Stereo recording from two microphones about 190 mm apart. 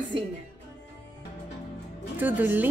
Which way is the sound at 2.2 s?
10° right (ahead or behind).